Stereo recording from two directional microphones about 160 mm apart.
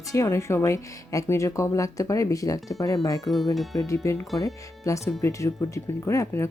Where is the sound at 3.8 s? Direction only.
20° left (ahead or behind).